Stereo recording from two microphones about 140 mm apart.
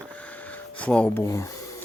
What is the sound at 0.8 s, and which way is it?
Speech, 10° left (ahead or behind).